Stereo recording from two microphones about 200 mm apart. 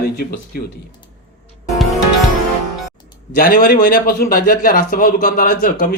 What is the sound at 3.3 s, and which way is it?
Speech, 45° left (ahead or behind).